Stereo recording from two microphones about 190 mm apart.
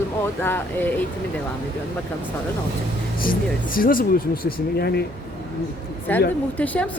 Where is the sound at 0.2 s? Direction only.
10° left (ahead or behind).